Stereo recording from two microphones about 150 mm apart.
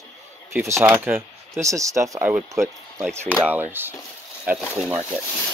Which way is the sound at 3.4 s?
10° right (ahead or behind).